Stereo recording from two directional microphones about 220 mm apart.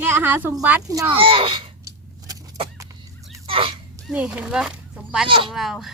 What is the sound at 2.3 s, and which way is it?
Vehicle, 25° right (ahead or behind).